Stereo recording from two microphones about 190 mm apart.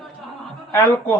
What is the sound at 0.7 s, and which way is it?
Speech, 15° left (ahead or behind).